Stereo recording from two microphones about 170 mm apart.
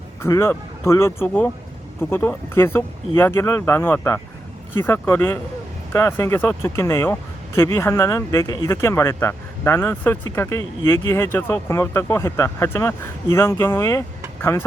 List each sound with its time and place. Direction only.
0.2 s speech: 15° left (ahead or behind)